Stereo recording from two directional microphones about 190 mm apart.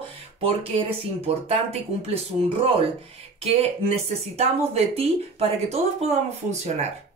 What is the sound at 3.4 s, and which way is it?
Speech, 30° right (ahead or behind).